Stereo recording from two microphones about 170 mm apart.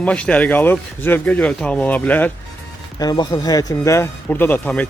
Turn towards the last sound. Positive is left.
turn(degrees=10)  # may be behind; listen again after turning